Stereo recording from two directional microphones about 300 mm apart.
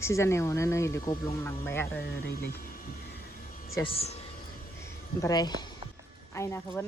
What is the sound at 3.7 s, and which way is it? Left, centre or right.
Speech, centre.